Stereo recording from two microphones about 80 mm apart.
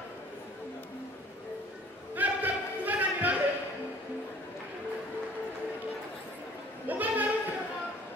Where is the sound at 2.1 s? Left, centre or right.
Right.